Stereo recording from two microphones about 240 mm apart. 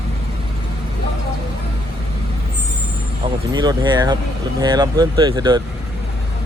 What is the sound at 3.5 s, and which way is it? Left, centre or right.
Speech, centre.